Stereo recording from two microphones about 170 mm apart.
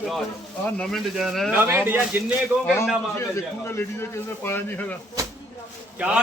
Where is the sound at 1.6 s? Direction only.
10° right (ahead or behind).